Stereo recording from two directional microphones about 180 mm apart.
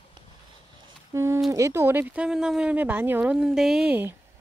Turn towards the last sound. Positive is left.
turn(degrees=-5)  # may be behind; listen again after turning